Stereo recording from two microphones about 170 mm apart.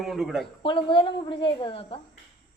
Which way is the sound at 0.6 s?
30° left (ahead or behind).